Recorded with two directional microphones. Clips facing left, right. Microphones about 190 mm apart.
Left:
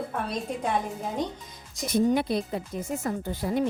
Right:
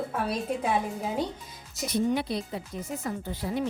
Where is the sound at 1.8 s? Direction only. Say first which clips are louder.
Left 3 dB; 50° left (ahead or behind).